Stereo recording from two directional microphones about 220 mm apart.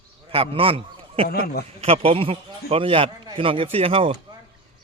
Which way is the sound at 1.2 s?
45° left (ahead or behind).